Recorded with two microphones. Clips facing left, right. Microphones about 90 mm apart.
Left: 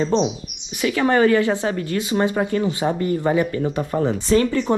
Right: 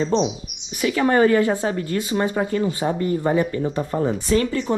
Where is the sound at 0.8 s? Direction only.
55° left (ahead or behind).